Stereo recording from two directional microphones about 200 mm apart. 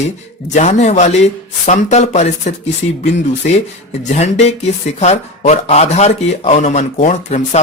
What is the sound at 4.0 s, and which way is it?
Speech, 35° left (ahead or behind).